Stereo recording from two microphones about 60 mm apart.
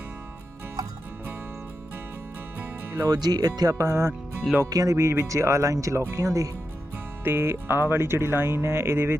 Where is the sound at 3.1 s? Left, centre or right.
Right.